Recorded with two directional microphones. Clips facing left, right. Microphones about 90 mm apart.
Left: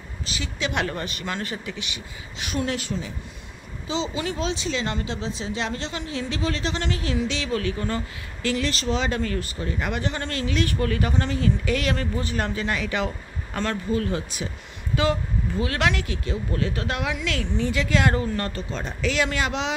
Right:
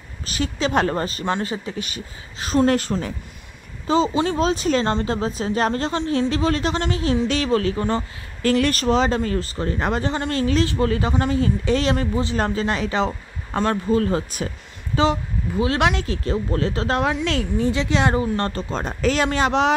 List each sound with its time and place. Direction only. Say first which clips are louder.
0.3 s speech: right 7 dB; 40° right (ahead or behind); by 1.7 s 25° right (ahead or behind)
1.7 s speech: right 4 dB; 40° right (ahead or behind)
7.2 s speech: right 6 dB; 40° right (ahead or behind)
8.5 s speech: right 7 dB; 55° right (ahead or behind); by 12.4 s 25° right (ahead or behind)
12.4 s speech: right 3 dB; 35° right (ahead or behind)
13.8 s speech: right 5 dB; 35° right (ahead or behind)
15.6 s speech: right 5 dB; 25° right (ahead or behind)
18.3 s speech: right 5 dB; 35° right (ahead or behind)